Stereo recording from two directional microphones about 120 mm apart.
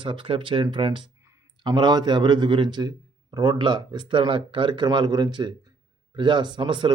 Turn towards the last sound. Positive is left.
turn(degrees=-40)  # may be behind; listen again after turning